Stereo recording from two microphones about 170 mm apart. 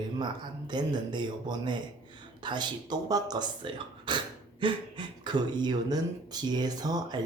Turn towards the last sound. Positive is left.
turn(degrees=-25)  # may be behind; listen again after turning